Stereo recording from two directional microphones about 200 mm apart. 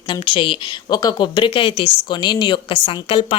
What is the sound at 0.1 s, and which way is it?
Speech, 25° left (ahead or behind).